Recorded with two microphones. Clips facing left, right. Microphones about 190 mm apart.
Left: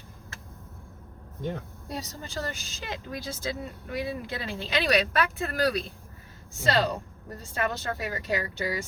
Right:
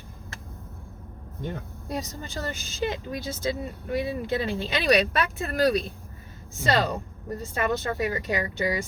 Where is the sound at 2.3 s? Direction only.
20° right (ahead or behind).